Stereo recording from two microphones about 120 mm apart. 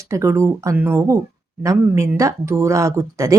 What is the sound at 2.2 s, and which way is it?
Speech, 25° right (ahead or behind).